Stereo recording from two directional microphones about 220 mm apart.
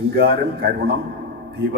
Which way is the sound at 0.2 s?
45° right (ahead or behind).